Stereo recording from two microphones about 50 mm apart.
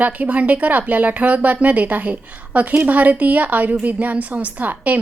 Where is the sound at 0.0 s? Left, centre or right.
Right.